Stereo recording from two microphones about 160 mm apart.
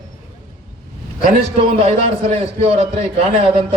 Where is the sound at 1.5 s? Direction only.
35° right (ahead or behind).